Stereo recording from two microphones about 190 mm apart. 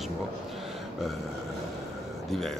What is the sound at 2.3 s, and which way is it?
Speech, centre (ahead or behind).